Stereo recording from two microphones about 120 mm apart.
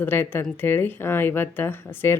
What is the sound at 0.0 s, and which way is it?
Speech, 20° left (ahead or behind).